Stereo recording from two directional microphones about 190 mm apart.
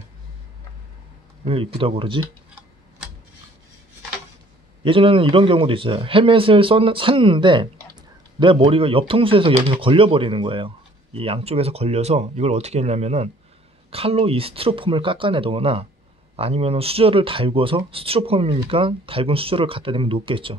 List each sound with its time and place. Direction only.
1.4 s speech: 30° right (ahead or behind)
4.8 s speech: 30° right (ahead or behind)